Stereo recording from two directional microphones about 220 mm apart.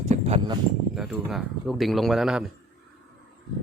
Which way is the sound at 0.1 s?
25° right (ahead or behind).